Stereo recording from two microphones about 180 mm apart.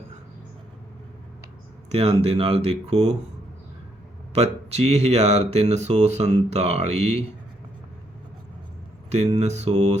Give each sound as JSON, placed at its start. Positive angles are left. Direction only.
{"t": 1.9, "sound": "speech", "side_deg": -35}
{"t": 4.4, "sound": "speech", "side_deg": -35}
{"t": 9.0, "sound": "speech", "side_deg": -35}